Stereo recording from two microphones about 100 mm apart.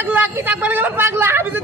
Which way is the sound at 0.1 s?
20° right (ahead or behind).